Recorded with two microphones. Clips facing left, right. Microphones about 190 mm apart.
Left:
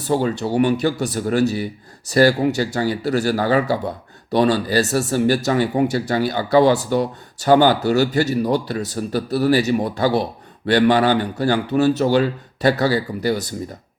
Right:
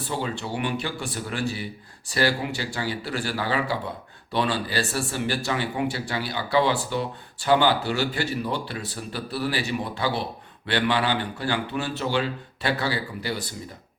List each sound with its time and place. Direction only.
0.1 s speech: 40° left (ahead or behind)